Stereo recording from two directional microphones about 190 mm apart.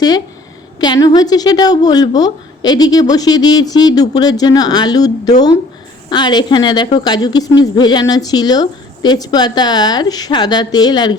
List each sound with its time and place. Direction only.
0.8 s a woman's voice: 20° left (ahead or behind)